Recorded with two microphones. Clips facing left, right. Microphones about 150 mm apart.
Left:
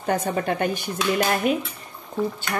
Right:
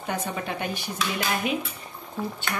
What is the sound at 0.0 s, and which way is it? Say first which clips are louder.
Speech: left 7 dB; 50° left (ahead or behind).